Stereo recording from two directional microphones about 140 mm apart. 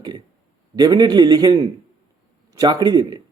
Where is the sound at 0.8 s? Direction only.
30° right (ahead or behind).